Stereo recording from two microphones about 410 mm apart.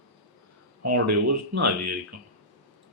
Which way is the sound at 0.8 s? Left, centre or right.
Right.